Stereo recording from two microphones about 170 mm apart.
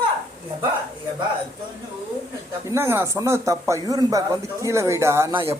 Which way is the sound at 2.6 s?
15° right (ahead or behind).